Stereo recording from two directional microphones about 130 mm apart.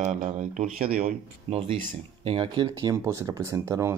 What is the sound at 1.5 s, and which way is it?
Speech, 10° left (ahead or behind).